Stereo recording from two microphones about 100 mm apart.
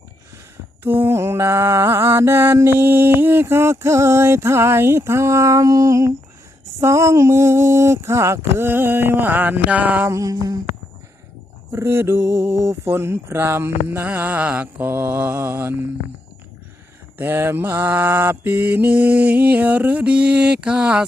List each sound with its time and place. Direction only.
0.8 s mantra: 20° right (ahead or behind)
10.1 s a sound: 35° right (ahead or behind)
11.7 s mantra: 25° right (ahead or behind)
17.2 s mantra: 25° right (ahead or behind)